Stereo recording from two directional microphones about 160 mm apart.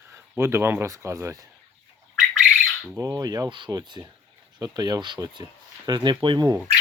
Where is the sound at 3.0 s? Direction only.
25° right (ahead or behind).